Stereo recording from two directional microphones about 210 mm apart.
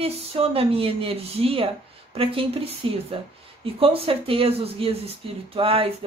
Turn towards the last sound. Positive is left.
turn(degrees=-25)  # may be behind; listen again after turning